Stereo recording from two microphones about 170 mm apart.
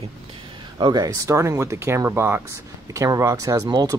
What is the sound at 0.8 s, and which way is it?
Speech, 25° right (ahead or behind).